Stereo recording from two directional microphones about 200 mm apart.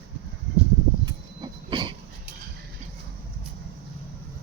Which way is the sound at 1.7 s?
25° right (ahead or behind).